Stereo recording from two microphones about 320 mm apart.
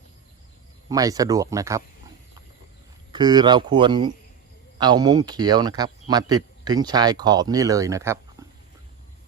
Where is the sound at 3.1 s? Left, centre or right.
Centre.